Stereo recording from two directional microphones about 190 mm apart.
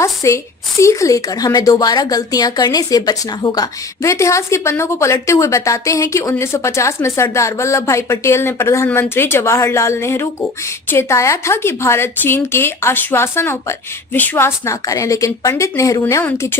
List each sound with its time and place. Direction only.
0.0 s a woman's voice: 15° left (ahead or behind)